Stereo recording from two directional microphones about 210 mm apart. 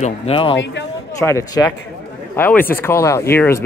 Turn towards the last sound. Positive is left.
turn(degrees=10)  # may be behind; listen again after turning